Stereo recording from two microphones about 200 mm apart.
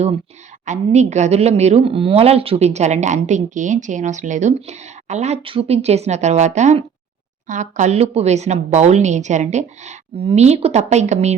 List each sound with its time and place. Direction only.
0.6 s a woman's voice: 35° right (ahead or behind)